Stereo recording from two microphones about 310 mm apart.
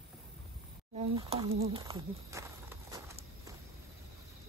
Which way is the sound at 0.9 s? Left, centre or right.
Centre.